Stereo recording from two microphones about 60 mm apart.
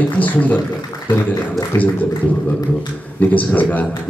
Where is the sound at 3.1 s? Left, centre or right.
Left.